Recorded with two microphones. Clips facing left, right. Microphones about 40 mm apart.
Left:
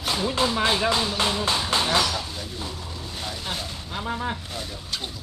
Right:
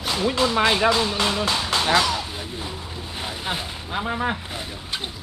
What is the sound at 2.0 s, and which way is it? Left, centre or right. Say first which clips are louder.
Honk: right 2 dB; centre.